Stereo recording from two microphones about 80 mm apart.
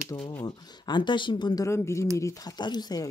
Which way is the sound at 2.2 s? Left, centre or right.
Left.